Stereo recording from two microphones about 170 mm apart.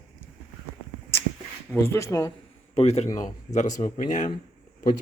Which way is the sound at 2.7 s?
40° left (ahead or behind).